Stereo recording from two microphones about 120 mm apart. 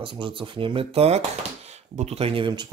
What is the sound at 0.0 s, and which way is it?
Speech, 45° right (ahead or behind).